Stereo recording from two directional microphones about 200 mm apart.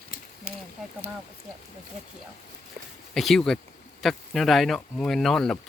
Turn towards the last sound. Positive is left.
turn(degrees=0)  # may be behind; listen again after turning